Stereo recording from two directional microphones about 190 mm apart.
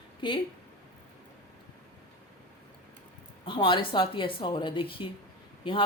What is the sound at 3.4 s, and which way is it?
Speech, 25° left (ahead or behind).